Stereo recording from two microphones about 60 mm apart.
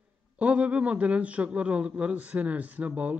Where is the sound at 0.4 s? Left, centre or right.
Right.